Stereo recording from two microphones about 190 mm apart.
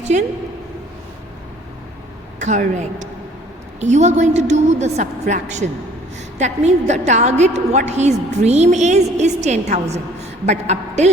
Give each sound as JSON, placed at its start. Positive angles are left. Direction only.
{"t": 0.0, "sound": "a woman's voice", "side_deg": -40}
{"t": 2.4, "sound": "a woman's voice", "side_deg": -40}